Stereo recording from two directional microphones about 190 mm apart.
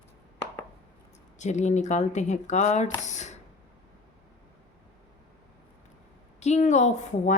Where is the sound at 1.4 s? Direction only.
40° left (ahead or behind).